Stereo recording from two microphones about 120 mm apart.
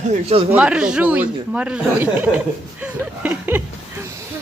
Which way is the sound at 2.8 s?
15° right (ahead or behind).